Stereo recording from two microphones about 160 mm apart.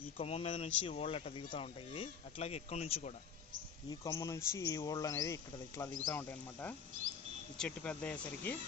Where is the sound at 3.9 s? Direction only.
25° left (ahead or behind).